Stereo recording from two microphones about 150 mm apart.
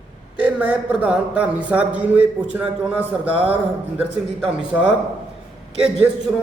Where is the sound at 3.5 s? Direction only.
10° right (ahead or behind).